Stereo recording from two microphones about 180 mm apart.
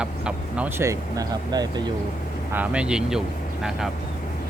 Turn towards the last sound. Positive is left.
turn(degrees=0)  # may be behind; listen again after turning